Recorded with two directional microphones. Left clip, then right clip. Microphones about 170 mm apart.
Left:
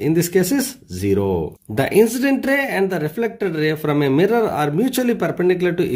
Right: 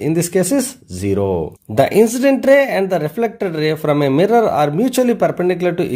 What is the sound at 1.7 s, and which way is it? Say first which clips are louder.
Speech: right 3 dB; 10° right (ahead or behind).